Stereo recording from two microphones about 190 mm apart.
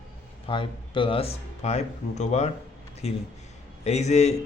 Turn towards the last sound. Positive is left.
turn(degrees=35)  # may be behind; listen again after turning